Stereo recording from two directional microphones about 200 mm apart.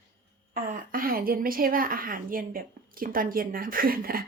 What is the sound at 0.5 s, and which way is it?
A woman's voice, 45° right (ahead or behind).